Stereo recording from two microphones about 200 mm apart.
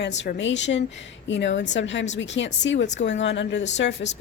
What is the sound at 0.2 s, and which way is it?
A woman's voice, 65° left (ahead or behind).